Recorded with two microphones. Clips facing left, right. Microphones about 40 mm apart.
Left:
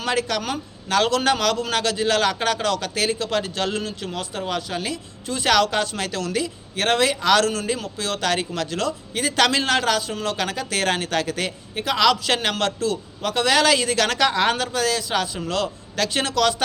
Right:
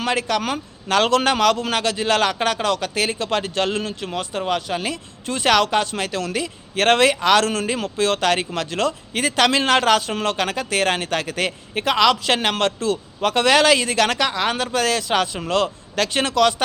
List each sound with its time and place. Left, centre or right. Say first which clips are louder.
0.0 s a man's voice: right 2 dB; right
6.7 s speech: right 4 dB; right
7.2 s a man's voice: right 2 dB; right
8.9 s speech: right 2 dB; right
9.3 s a man's voice: right 2 dB; right
14.3 s a woman's voice: left 2 dB; centre
14.7 s a man's voice: right 3 dB; right